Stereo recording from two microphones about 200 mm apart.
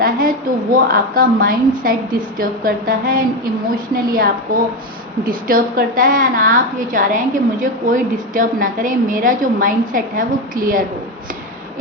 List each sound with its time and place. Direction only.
0.0 s a woman's voice: 45° right (ahead or behind)